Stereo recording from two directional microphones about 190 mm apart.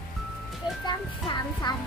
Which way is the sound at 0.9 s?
20° left (ahead or behind).